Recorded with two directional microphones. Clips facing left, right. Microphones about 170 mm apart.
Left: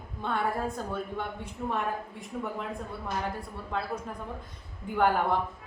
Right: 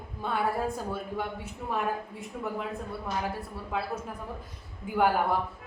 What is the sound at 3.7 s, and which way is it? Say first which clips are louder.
A woman's voice: even; 5° right (ahead or behind).